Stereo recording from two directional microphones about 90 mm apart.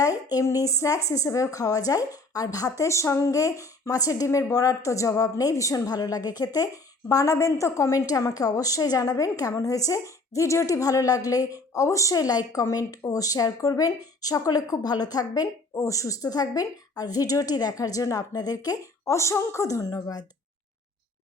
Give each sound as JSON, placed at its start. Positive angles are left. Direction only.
{"t": 0.0, "sound": "a woman's voice", "side_deg": 40}